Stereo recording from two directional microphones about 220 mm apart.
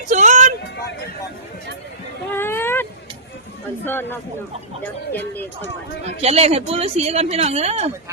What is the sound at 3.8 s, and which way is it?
Speech, 10° left (ahead or behind).